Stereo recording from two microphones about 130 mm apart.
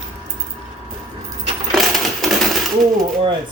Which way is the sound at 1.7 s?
Centre (ahead or behind).